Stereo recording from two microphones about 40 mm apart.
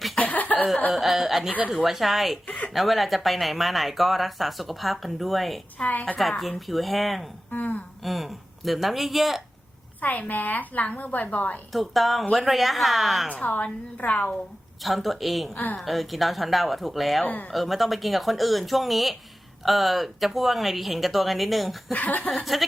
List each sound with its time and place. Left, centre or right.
0.2 s cough: left
0.9 s speech: centre
5.8 s a woman's voice: left
6.7 s speech: centre
7.5 s a woman's voice: left
8.0 s speech: centre
10.0 s a woman's voice: left
11.7 s speech: centre
13.3 s a woman's voice: left
14.8 s speech: centre
21.9 s a woman's voice: left
22.3 s speech: centre